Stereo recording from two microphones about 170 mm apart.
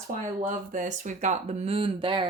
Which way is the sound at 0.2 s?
50° right (ahead or behind).